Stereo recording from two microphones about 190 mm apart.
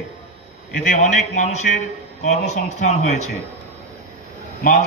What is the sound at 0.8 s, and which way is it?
A man's voice, 40° left (ahead or behind).